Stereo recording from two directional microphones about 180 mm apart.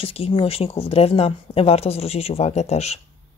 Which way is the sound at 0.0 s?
30° left (ahead or behind).